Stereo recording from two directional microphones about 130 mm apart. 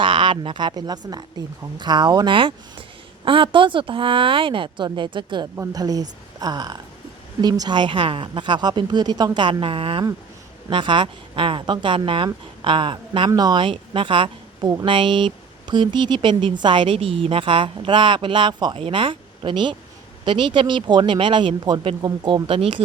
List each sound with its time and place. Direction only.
0.0 s a woman's voice: 40° right (ahead or behind)